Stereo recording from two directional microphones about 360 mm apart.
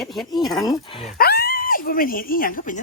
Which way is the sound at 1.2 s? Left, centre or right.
Left.